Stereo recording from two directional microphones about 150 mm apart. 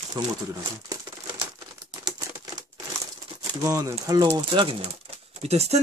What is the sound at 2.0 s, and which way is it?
Typewriter, 25° right (ahead or behind).